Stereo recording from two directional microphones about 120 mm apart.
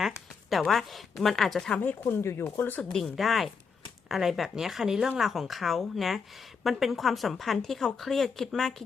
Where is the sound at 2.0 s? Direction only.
20° left (ahead or behind).